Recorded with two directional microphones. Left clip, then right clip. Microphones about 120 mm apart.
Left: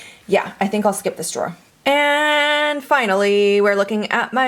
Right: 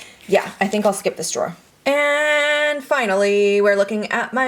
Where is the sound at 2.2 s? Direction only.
20° left (ahead or behind).